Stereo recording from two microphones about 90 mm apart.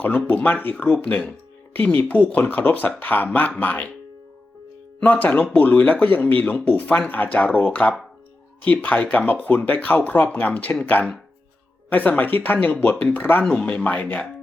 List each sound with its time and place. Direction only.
0.0 s speech: 20° left (ahead or behind)
4.9 s speech: 15° left (ahead or behind)
13.4 s speech: 5° left (ahead or behind)